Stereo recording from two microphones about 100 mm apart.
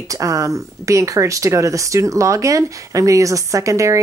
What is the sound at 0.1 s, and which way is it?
Speech, 35° right (ahead or behind).